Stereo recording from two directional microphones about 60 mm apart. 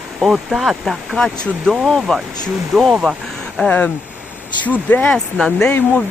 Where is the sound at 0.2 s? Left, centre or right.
Centre.